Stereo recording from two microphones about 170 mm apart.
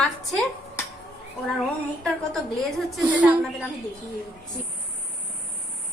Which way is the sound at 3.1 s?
10° right (ahead or behind).